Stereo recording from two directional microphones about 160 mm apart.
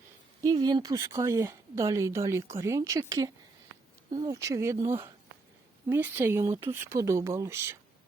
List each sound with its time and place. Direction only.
0.4 s speech: 25° right (ahead or behind)